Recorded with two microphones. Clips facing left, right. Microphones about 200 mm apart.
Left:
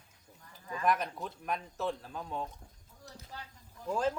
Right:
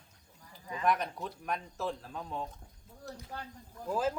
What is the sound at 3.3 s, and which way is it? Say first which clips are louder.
Speech: right 3 dB; 55° right (ahead or behind).